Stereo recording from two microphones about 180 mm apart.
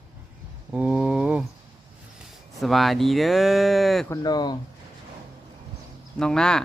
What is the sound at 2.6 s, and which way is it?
Speech, centre (ahead or behind).